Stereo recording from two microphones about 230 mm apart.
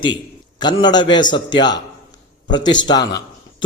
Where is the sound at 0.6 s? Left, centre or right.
Centre.